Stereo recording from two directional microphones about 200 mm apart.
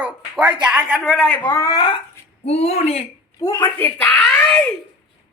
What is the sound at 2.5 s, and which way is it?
Speech, 30° left (ahead or behind).